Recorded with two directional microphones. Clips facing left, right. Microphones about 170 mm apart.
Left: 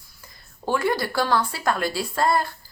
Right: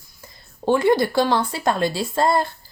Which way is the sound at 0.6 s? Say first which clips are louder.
Right 6 dB; 25° right (ahead or behind).